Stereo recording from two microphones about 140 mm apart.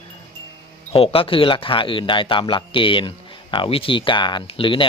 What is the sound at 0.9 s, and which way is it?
Speech, 40° left (ahead or behind).